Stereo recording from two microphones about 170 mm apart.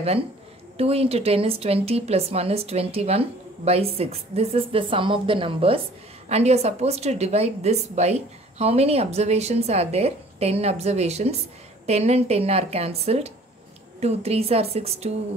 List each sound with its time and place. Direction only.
0.7 s a woman's voice: 35° right (ahead or behind)